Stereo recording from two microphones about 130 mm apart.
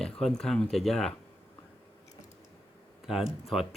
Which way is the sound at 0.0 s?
5° left (ahead or behind).